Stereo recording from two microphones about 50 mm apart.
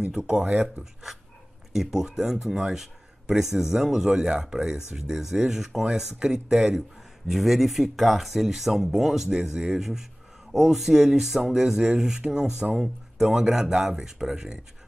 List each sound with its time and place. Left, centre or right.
0.4 s speech: right
1.7 s speech: centre